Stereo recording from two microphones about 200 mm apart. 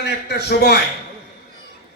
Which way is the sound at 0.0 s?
55° left (ahead or behind).